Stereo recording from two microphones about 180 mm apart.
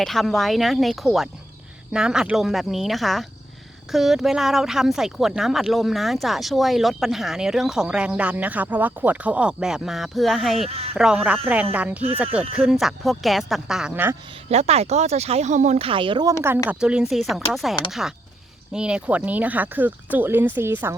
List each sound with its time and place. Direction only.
0.0 s speech: centre (ahead or behind)
10.7 s speech: 35° right (ahead or behind)
10.9 s speech: 5° right (ahead or behind)
14.5 s speech: 35° right (ahead or behind)
16.6 s speech: 5° right (ahead or behind)